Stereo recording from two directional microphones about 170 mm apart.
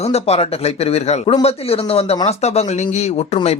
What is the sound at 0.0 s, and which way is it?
Speech, 35° left (ahead or behind).